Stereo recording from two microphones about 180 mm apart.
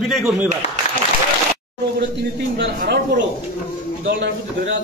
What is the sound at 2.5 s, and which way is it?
A man's voice, 65° right (ahead or behind).